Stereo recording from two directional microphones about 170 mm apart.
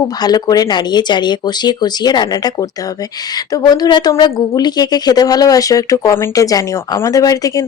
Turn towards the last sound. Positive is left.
turn(degrees=20)  # may be behind; listen again after turning